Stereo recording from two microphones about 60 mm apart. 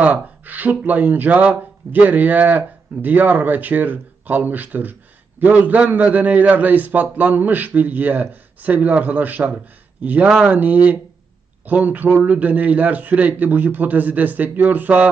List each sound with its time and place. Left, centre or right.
0.0 s speech: right
10.5 s speech: right